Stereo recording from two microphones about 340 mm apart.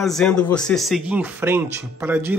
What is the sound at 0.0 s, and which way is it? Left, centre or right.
Speech, centre.